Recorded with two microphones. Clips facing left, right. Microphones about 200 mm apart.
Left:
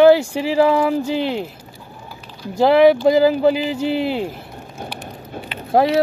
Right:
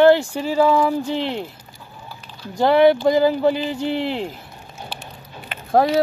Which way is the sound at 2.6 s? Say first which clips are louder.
Left 2 dB; 5° left (ahead or behind).